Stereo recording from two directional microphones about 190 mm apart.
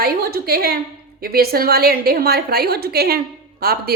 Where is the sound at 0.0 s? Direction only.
55° right (ahead or behind).